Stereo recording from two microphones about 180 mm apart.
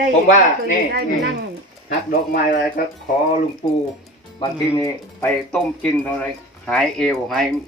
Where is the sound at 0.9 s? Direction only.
60° right (ahead or behind).